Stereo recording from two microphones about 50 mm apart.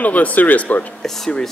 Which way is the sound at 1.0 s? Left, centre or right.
Centre.